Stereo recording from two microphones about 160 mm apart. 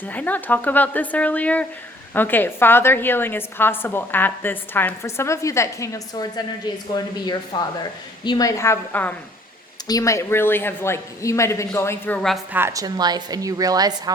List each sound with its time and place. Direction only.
0.0 s a woman's voice: 10° left (ahead or behind)
9.8 s a woman's voice: 20° left (ahead or behind); by 12.4 s 5° left (ahead or behind)
12.5 s a woman's voice: 20° right (ahead or behind)